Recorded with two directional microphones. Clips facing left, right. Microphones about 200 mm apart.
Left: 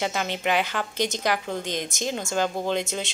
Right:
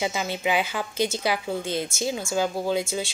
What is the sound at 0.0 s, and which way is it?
Speech, 10° right (ahead or behind).